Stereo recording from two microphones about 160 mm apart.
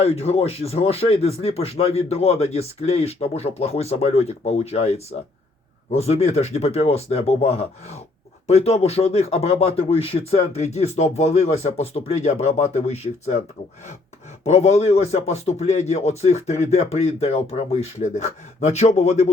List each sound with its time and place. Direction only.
0.0 s speech: 40° left (ahead or behind)
14.4 s a man's voice: 40° left (ahead or behind)